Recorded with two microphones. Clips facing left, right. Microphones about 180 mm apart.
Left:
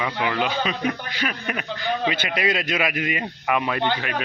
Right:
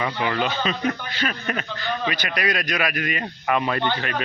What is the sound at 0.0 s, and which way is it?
Speech, 5° left (ahead or behind).